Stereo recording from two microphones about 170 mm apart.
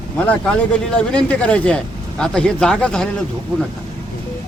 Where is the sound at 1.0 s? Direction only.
5° left (ahead or behind).